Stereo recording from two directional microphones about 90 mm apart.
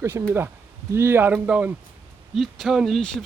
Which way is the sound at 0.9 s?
25° right (ahead or behind).